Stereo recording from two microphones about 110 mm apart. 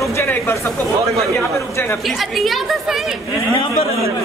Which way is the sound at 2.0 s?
Centre (ahead or behind).